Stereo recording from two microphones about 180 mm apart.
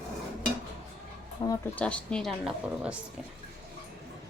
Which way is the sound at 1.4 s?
25° left (ahead or behind).